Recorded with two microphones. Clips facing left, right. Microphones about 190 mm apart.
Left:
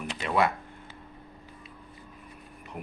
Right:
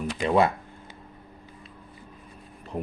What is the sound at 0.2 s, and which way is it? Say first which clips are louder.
Speech: right 4 dB; 30° right (ahead or behind).